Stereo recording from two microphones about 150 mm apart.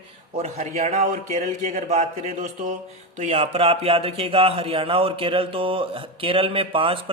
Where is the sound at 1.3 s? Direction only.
45° right (ahead or behind).